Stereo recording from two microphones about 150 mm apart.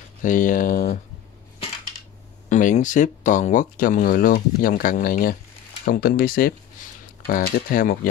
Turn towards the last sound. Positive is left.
turn(degrees=70)  # may be behind; listen again after turning